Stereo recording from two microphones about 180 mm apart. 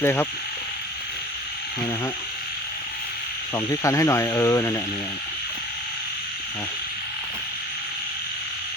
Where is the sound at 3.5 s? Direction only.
15° left (ahead or behind).